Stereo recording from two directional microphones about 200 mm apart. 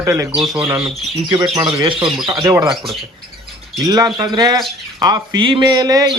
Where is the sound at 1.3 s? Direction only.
20° right (ahead or behind).